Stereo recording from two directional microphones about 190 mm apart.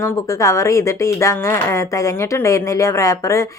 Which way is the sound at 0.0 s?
15° left (ahead or behind).